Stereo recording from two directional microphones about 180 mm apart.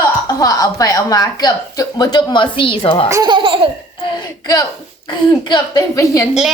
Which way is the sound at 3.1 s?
20° right (ahead or behind).